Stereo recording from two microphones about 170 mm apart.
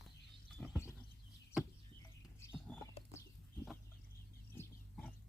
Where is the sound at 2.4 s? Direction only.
15° left (ahead or behind).